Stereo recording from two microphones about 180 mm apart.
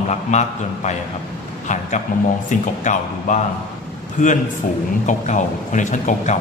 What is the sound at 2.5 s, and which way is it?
A man's voice, 45° left (ahead or behind).